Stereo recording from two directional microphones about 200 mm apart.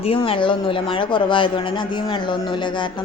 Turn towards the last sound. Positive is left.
turn(degrees=25)  # may be behind; listen again after turning